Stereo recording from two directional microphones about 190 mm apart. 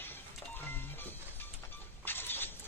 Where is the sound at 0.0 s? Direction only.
10° left (ahead or behind).